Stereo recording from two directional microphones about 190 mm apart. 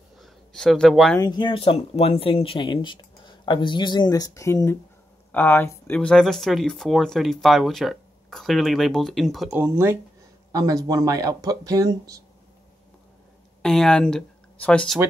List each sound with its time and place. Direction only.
0.2 s a sound: centre (ahead or behind)
1.2 s speech: 25° left (ahead or behind); by 9.5 s centre (ahead or behind)
9.5 s speech: 15° right (ahead or behind)
13.6 s speech: 5° left (ahead or behind)